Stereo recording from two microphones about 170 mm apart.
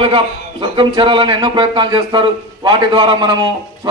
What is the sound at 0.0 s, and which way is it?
Speech, 30° right (ahead or behind).